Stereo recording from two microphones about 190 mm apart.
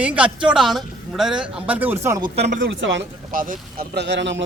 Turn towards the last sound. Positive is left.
turn(degrees=-70)  # may be behind; listen again after turning